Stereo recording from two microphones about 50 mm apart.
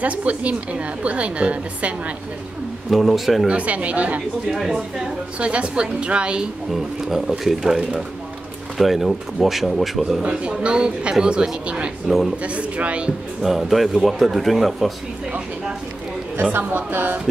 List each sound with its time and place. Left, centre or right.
0.0 s a woman's voice: right
2.9 s speech: centre
3.4 s a woman's voice: right
4.5 s speech: centre
5.4 s a woman's voice: right
7.1 s speech: centre
10.2 s a woman's voice: centre
13.4 s speech: centre
16.5 s a woman's voice: right